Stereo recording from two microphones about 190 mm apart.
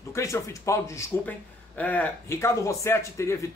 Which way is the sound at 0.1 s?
15° left (ahead or behind).